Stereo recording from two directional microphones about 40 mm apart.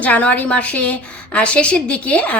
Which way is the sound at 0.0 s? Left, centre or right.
Left.